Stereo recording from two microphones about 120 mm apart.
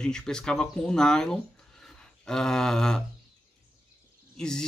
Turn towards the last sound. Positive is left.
turn(degrees=5)  # may be behind; listen again after turning